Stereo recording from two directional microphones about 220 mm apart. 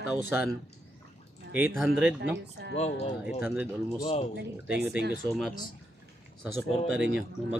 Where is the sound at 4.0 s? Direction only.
25° left (ahead or behind).